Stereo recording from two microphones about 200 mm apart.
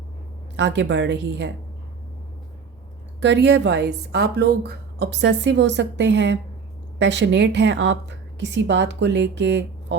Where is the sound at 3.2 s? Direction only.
60° right (ahead or behind).